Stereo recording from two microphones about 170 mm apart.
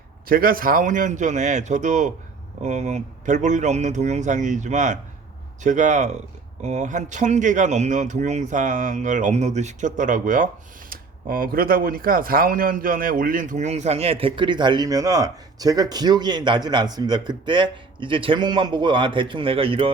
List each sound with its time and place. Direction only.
0.3 s speech: 55° right (ahead or behind); by 19.9 s 30° right (ahead or behind)